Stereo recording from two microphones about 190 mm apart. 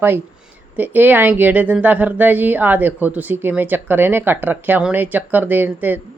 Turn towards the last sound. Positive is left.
turn(degrees=-10)  # may be behind; listen again after turning